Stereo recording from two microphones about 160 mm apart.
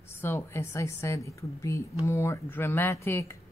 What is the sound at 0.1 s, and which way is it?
A woman's voice, 15° left (ahead or behind).